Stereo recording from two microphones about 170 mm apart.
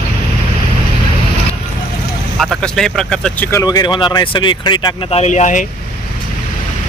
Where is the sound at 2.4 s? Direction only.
5° left (ahead or behind).